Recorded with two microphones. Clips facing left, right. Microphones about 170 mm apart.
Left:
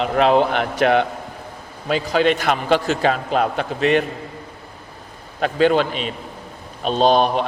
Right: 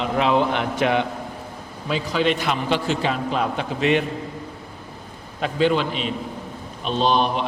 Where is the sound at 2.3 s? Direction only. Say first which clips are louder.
Left 4 dB; 50° left (ahead or behind).